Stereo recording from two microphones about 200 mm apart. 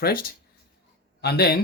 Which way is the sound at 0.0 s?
50° left (ahead or behind).